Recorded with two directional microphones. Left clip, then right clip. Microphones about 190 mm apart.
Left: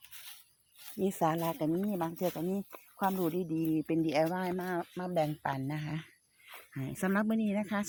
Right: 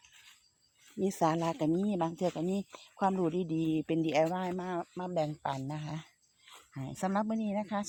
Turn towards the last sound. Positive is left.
turn(degrees=5)  # may be behind; listen again after turning